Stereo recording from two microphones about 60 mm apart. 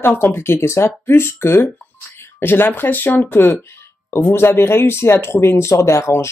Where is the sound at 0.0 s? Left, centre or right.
Left.